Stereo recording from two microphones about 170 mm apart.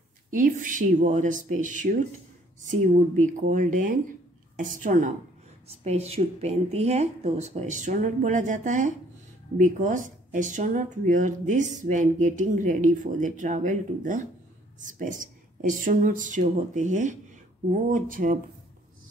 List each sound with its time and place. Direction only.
0.3 s speech: 50° right (ahead or behind)
5.7 s a woman's voice: 40° right (ahead or behind); by 18.4 s 55° right (ahead or behind)